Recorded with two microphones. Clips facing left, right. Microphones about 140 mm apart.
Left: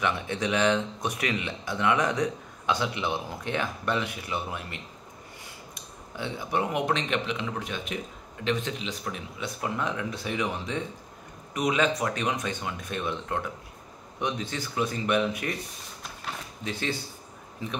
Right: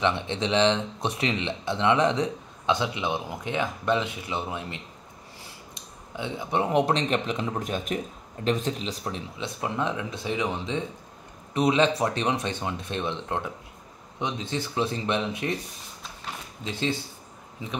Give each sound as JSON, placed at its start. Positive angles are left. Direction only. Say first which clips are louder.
{"t": 0.0, "sound": "speech", "louder": "right 2 dB", "side_deg": -25}
{"t": 17.6, "sound": "speech", "louder": "left 1 dB", "side_deg": -20}